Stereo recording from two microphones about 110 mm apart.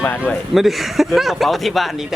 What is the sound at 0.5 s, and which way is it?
Speech, centre (ahead or behind).